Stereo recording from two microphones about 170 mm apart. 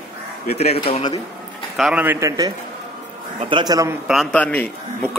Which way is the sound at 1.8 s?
5° right (ahead or behind).